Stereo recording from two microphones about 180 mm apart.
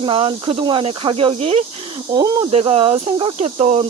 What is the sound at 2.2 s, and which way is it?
Speech, 20° right (ahead or behind).